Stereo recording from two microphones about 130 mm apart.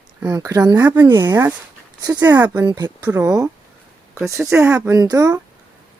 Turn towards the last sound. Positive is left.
turn(degrees=-25)  # may be behind; listen again after turning